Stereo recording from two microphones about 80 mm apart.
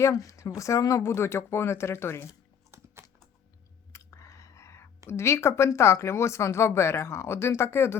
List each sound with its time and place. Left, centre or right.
0.0 s speech: left
2.7 s typing: right
3.9 s a sound: left
5.0 s speech: left